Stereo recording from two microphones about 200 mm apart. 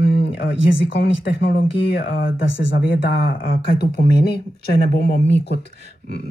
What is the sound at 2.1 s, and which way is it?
Speech, 50° left (ahead or behind).